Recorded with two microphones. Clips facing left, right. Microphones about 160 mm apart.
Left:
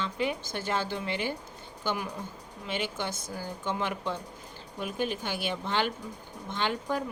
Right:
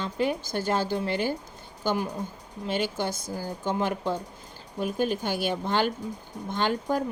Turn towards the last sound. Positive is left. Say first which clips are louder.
# right 4 dB
turn(degrees=-40)  # may be behind; listen again after turning